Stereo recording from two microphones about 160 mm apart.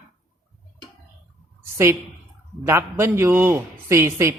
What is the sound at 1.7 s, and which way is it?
A woman's voice, 15° right (ahead or behind).